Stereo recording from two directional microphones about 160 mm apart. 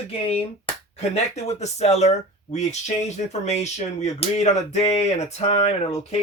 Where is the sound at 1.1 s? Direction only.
45° left (ahead or behind).